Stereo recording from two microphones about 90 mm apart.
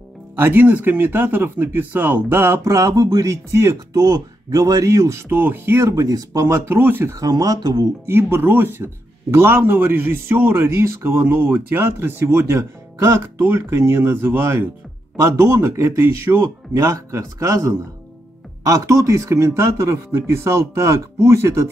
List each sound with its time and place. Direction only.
0.4 s a man's voice: 25° right (ahead or behind)
2.6 s speech: 35° right (ahead or behind)
5.3 s speech: 25° right (ahead or behind)
7.2 s speech: 45° right (ahead or behind)
8.1 s a man's voice: 30° right (ahead or behind)